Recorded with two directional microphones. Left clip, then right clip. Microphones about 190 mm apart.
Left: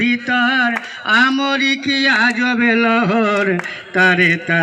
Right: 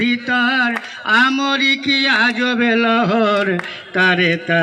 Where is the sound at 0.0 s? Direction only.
10° left (ahead or behind).